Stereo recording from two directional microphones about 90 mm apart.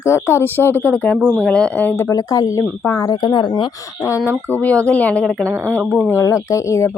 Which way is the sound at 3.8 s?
35° left (ahead or behind).